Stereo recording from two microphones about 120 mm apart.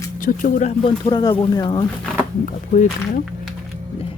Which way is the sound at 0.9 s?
35° left (ahead or behind).